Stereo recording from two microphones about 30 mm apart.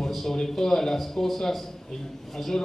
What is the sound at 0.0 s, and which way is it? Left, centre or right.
A man's voice, centre.